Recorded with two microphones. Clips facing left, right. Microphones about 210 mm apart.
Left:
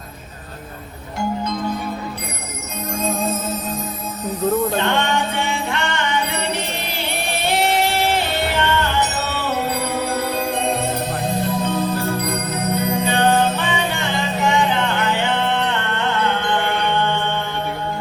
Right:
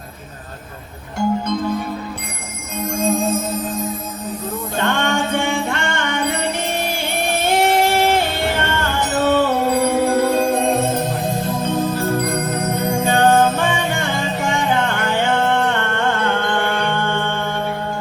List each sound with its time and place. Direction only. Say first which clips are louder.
2.9 s music: right 4 dB; 50° right (ahead or behind)
4.8 s music: right 1 dB; 50° right (ahead or behind)